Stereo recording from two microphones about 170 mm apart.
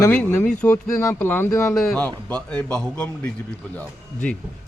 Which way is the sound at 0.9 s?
15° left (ahead or behind).